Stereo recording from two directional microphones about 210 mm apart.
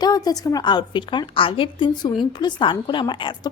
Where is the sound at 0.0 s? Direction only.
20° left (ahead or behind).